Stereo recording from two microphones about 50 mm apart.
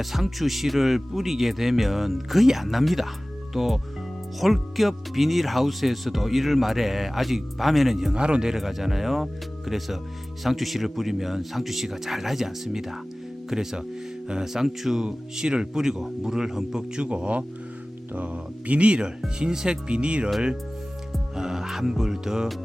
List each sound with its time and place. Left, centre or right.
0.0 s speech: centre
8.1 s speech: centre
17.1 s speech: right
21.3 s speech: centre